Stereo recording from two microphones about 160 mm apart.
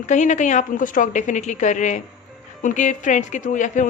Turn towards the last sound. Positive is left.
turn(degrees=50)  # may be behind; listen again after turning